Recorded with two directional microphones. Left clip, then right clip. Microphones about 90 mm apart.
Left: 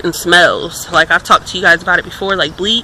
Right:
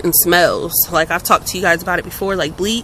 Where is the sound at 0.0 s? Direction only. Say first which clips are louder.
Left 4 dB; 35° right (ahead or behind).